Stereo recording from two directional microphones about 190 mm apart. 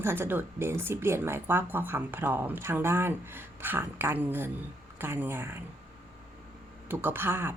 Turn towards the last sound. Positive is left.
turn(degrees=-10)  # may be behind; listen again after turning